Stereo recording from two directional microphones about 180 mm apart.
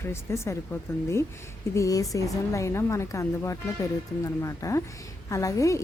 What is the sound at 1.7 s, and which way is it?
A woman's voice, 20° left (ahead or behind).